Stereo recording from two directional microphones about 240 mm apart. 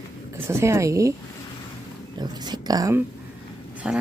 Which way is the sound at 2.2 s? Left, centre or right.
Centre.